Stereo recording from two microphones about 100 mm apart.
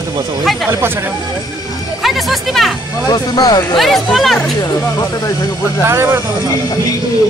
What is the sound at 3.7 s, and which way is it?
Speech, centre (ahead or behind).